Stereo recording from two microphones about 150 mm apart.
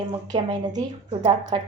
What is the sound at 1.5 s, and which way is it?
Speech, 35° right (ahead or behind).